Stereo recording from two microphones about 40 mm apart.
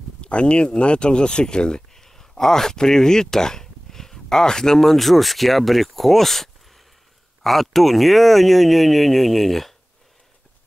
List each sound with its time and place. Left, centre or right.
0.2 s speech: left
2.0 s speech: centre